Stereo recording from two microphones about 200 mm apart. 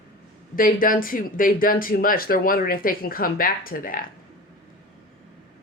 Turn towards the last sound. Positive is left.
turn(degrees=45)  # may be behind; listen again after turning